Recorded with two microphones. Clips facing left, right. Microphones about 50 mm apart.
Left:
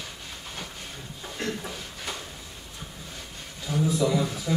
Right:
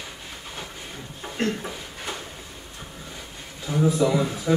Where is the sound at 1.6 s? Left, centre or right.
Centre.